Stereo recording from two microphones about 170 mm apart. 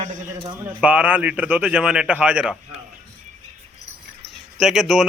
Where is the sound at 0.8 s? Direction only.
5° right (ahead or behind).